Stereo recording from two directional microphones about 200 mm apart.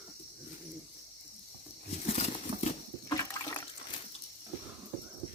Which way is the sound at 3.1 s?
15° left (ahead or behind).